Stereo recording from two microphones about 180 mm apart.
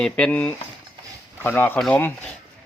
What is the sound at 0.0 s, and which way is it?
Speech, 5° left (ahead or behind).